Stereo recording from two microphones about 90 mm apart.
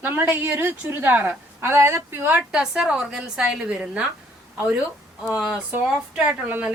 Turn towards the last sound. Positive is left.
turn(degrees=-15)  # may be behind; listen again after turning